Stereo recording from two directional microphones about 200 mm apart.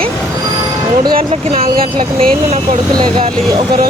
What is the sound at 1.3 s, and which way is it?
Speech, 30° right (ahead or behind).